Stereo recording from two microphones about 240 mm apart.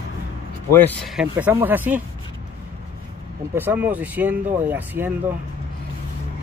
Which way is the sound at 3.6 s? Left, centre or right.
Centre.